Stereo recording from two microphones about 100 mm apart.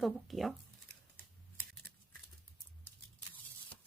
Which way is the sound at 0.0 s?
Centre (ahead or behind).